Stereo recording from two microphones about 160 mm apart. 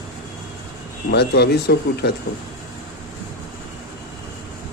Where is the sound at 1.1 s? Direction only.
90° left.